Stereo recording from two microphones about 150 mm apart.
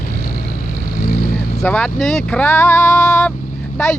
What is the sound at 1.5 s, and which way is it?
Speech, 10° left (ahead or behind).